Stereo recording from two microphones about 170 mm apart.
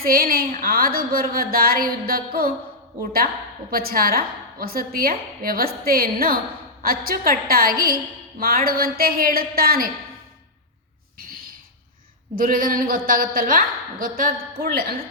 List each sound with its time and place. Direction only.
0.0 s a woman's voice: 60° right (ahead or behind)
12.4 s a woman's voice: 55° right (ahead or behind)